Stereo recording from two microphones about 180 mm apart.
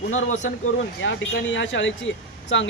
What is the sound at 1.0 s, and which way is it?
Speech, 90° left.